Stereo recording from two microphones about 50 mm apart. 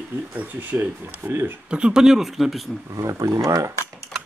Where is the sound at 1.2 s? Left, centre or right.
Right.